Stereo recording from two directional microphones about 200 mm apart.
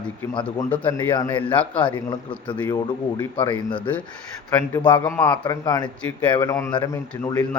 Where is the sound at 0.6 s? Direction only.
10° left (ahead or behind).